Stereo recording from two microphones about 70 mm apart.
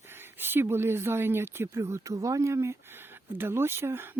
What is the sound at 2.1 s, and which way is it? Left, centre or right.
Speech, right.